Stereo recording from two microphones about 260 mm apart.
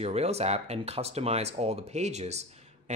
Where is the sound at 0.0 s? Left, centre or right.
Right.